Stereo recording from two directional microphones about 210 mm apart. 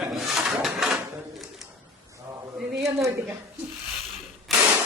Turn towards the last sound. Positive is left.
turn(degrees=0)  # may be behind; listen again after turning